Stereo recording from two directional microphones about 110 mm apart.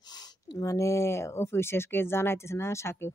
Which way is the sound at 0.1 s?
40° left (ahead or behind).